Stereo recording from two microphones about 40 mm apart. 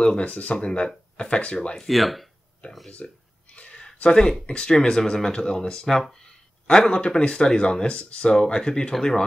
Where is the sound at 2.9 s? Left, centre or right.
Left.